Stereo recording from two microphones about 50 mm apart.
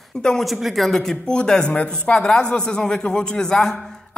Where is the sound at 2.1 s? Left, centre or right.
Centre.